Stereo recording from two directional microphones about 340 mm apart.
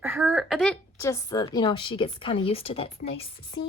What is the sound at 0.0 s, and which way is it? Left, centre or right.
A woman's voice, centre.